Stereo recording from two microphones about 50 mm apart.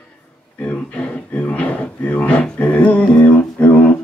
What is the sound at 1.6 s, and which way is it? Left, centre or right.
Drawer open or close, left.